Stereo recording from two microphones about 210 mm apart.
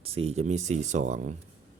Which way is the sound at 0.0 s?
30° right (ahead or behind).